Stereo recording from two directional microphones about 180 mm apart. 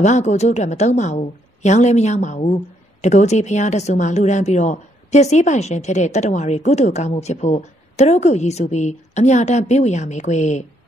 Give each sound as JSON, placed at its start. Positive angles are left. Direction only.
{"t": 0.0, "sound": "a woman's voice", "side_deg": 40}